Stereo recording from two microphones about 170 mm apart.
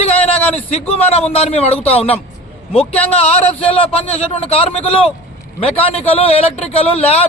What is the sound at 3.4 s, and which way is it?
A man's voice, 35° left (ahead or behind).